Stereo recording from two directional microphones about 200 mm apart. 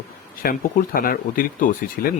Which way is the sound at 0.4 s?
50° left (ahead or behind).